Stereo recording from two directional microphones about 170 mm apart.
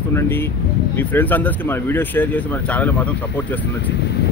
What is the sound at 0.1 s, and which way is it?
Speech, 15° left (ahead or behind).